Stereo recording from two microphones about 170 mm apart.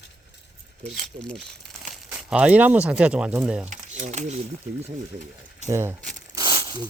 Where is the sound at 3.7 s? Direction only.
45° right (ahead or behind).